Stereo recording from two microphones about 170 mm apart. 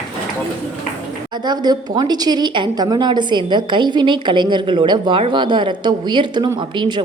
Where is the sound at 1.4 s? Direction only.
25° right (ahead or behind).